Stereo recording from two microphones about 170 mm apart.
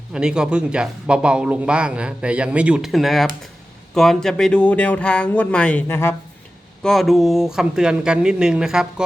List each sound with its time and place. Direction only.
0.1 s speech: 5° right (ahead or behind); by 6.1 s 15° left (ahead or behind)
6.8 s speech: centre (ahead or behind)